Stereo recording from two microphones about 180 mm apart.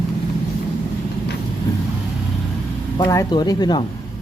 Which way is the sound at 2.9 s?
15° left (ahead or behind).